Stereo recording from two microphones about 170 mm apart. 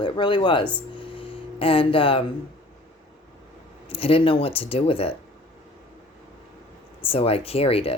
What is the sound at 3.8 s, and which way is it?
Speech, 35° left (ahead or behind).